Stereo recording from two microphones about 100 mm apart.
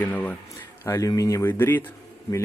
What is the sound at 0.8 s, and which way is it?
Speech, 30° left (ahead or behind).